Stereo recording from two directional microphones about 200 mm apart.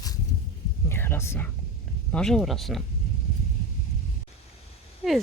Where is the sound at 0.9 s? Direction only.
10° left (ahead or behind).